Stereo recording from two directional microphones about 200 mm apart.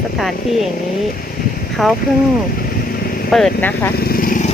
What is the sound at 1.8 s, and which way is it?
Speech, centre (ahead or behind).